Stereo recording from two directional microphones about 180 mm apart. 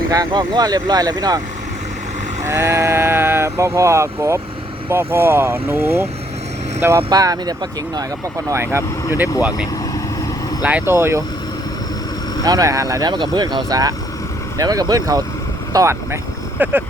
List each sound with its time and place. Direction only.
0.1 s speech: 20° right (ahead or behind)
2.4 s speech: 15° right (ahead or behind)
10.6 s speech: 10° right (ahead or behind)
12.5 s speech: 20° right (ahead or behind)